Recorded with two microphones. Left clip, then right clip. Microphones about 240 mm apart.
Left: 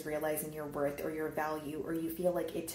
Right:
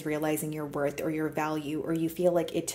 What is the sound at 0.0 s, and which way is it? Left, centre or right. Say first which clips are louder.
Speech: right 5 dB; right.